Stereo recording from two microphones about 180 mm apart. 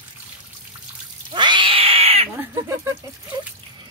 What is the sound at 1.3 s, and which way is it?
Cat, 25° right (ahead or behind).